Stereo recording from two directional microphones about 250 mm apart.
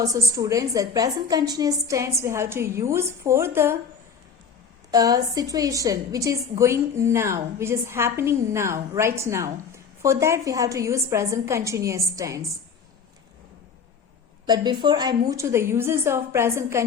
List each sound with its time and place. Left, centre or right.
0.0 s a woman's voice: centre
4.9 s a woman's voice: centre
14.4 s a woman's voice: centre